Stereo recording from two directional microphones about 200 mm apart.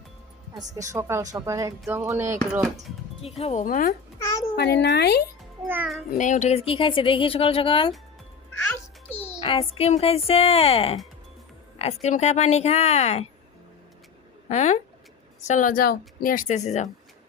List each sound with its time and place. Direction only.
0.7 s speech: 15° right (ahead or behind)
3.2 s a woman's voice: 30° left (ahead or behind)
4.5 s a child's voice: 55° left (ahead or behind)
5.6 s speech: 10° right (ahead or behind)
6.1 s speech: 40° left (ahead or behind)
8.5 s music: 10° left (ahead or behind)
9.4 s a woman's voice: 30° left (ahead or behind)
14.5 s a woman's voice: 35° left (ahead or behind)